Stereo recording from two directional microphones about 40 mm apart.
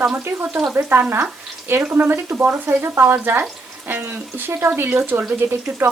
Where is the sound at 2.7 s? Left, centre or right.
Right.